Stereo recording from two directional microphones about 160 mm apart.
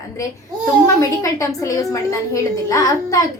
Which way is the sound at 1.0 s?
20° left (ahead or behind).